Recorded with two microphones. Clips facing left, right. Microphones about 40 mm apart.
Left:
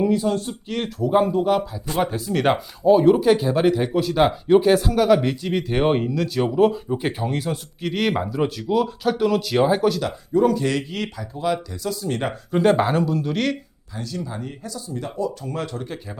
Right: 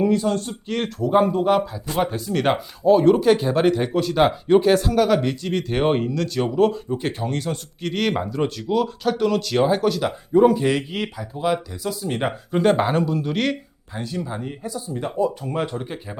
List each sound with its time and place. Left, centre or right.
0.0 s speech: centre
10.0 s speech: centre
13.9 s speech: right